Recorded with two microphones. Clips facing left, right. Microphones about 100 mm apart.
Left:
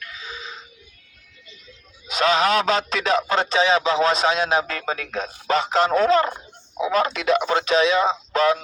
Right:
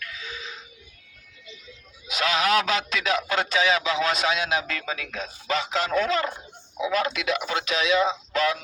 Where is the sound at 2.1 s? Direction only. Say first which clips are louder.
Left 4 dB; 35° left (ahead or behind).